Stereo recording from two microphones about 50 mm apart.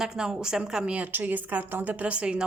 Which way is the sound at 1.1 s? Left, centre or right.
Right.